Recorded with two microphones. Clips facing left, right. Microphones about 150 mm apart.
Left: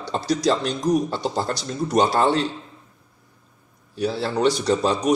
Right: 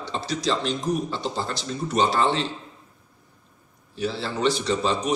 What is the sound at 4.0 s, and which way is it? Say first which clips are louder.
A man's voice: left 4 dB; 45° left (ahead or behind).